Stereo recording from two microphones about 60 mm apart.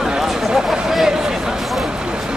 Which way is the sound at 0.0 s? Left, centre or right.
Centre.